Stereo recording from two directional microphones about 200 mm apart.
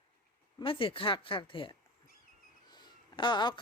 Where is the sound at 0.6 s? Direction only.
25° left (ahead or behind).